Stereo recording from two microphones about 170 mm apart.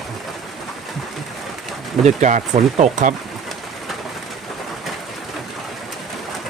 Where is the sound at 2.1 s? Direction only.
45° right (ahead or behind).